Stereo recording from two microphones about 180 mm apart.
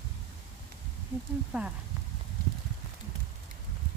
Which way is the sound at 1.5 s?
5° right (ahead or behind).